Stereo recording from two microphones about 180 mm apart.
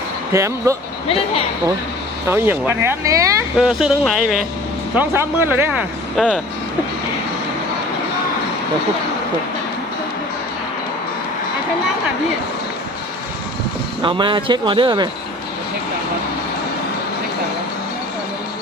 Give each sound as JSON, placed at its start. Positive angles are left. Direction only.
{"t": 0.3, "sound": "speech", "side_deg": -15}
{"t": 2.2, "sound": "speech", "side_deg": -10}
{"t": 3.6, "sound": "speech", "side_deg": -5}
{"t": 4.9, "sound": "speech", "side_deg": -15}
{"t": 6.1, "sound": "speech", "side_deg": 5}
{"t": 14.0, "sound": "speech", "side_deg": -25}